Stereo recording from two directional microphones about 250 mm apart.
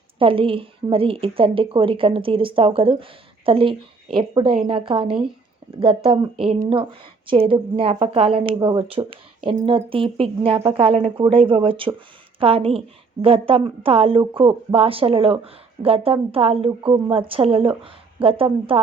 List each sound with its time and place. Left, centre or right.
0.2 s a woman's voice: right